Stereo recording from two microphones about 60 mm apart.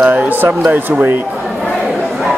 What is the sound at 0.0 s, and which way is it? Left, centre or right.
Speech, right.